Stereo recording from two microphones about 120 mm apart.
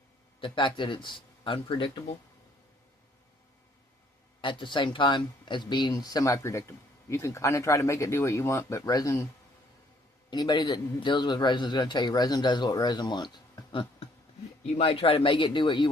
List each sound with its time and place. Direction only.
0.4 s a man's voice: 45° left (ahead or behind)
4.4 s speech: 45° left (ahead or behind); by 9.2 s 30° left (ahead or behind)
10.2 s a man's voice: 40° left (ahead or behind)